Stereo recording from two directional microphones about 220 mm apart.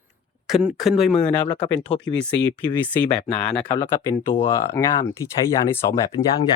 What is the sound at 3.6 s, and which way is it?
Speech, 20° left (ahead or behind).